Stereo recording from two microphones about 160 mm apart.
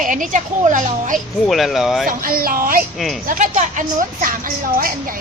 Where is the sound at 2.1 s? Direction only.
60° right (ahead or behind).